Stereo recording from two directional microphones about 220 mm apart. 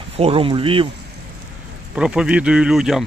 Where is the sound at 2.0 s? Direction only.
5° right (ahead or behind).